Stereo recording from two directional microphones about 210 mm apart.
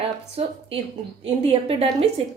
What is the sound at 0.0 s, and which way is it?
A woman's voice, 25° right (ahead or behind).